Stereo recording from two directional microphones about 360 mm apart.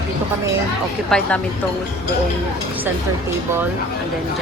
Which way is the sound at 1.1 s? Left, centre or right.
Centre.